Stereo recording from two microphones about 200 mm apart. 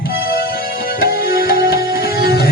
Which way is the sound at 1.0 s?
50° left (ahead or behind).